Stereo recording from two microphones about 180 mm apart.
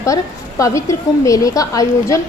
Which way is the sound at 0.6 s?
15° left (ahead or behind).